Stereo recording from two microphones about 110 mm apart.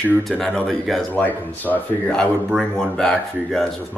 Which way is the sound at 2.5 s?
5° left (ahead or behind).